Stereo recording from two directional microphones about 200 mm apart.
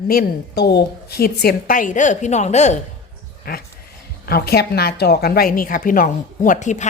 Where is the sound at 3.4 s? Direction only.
50° left (ahead or behind).